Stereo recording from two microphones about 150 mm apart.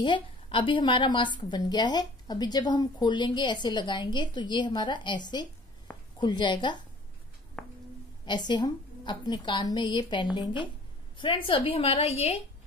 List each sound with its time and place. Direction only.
0.0 s a woman's voice: 35° left (ahead or behind)
7.6 s a sound: 10° left (ahead or behind)
8.3 s a woman's voice: 30° left (ahead or behind)